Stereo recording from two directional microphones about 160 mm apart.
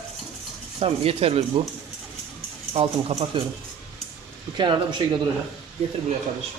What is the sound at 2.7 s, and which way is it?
Speech, 40° right (ahead or behind).